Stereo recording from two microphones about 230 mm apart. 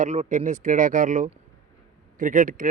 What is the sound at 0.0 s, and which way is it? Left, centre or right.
A man's voice, right.